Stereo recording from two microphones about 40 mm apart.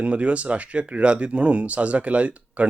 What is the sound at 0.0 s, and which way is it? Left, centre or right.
Speech, right.